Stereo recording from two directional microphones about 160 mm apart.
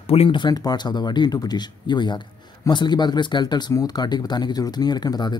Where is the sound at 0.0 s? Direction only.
40° left (ahead or behind).